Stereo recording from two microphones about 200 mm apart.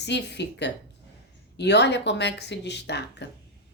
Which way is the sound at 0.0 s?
60° left (ahead or behind).